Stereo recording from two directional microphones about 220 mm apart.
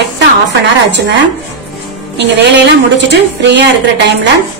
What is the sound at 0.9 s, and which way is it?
Speech, 50° right (ahead or behind).